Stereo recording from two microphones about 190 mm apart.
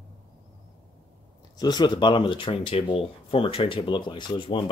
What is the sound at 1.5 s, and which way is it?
Speech, 20° left (ahead or behind).